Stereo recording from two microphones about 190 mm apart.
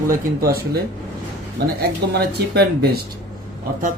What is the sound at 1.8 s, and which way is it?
Speech, 55° right (ahead or behind).